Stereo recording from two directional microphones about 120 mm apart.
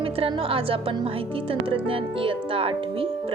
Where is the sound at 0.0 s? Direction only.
50° right (ahead or behind).